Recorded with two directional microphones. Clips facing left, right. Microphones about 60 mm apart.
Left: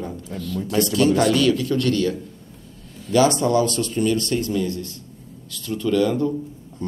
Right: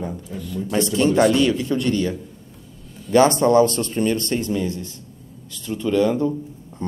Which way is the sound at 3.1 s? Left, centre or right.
Right.